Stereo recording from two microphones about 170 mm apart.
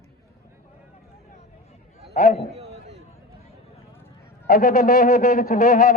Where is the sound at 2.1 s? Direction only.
40° left (ahead or behind).